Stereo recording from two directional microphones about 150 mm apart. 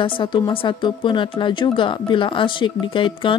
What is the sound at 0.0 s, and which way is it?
Speech, 35° left (ahead or behind).